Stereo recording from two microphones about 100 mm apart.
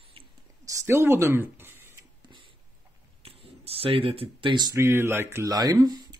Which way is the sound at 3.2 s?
75° right (ahead or behind).